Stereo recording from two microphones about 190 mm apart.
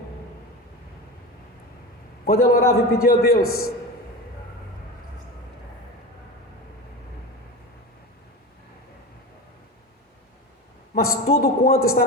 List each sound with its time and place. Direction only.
2.2 s a man's voice: 50° left (ahead or behind)
10.9 s a man's voice: 50° left (ahead or behind)